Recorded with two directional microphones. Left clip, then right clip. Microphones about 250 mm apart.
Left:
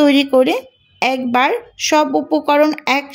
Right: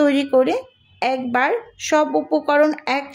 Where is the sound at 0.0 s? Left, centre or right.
Left.